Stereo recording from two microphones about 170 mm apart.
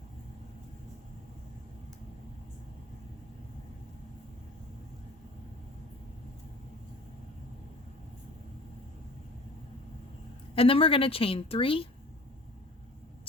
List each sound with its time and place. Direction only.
10.5 s a woman's voice: 35° left (ahead or behind)